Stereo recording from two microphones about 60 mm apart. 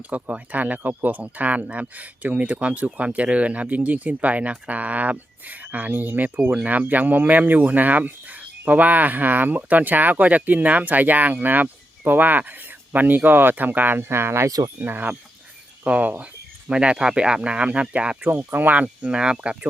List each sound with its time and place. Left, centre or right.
0.1 s speech: right
14.8 s speech: right
16.6 s speech: centre
18.2 s speech: right; by 19.5 s centre